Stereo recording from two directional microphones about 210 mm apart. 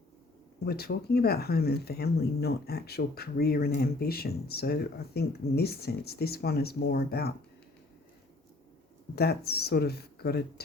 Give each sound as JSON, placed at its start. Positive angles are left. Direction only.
{"t": 0.6, "sound": "speech", "side_deg": 50}
{"t": 9.1, "sound": "speech", "side_deg": 50}